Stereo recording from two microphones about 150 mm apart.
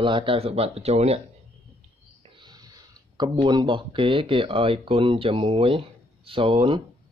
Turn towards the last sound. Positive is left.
turn(degrees=-30)  # may be behind; listen again after turning